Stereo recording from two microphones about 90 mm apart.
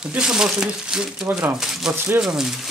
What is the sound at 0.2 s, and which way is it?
Speech, 5° right (ahead or behind).